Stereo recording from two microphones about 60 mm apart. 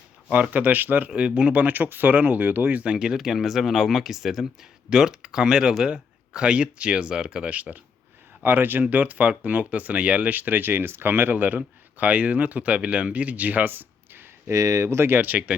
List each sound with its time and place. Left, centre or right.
0.3 s speech: right
2.8 s speech: centre; by 14.5 s right
14.5 s speech: right
15.2 s speech: right